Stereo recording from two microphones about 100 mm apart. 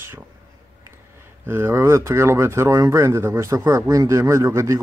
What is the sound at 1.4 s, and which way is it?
Speech, 25° right (ahead or behind).